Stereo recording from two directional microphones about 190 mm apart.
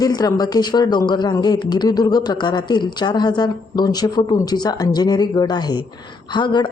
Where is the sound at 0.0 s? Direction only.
20° left (ahead or behind).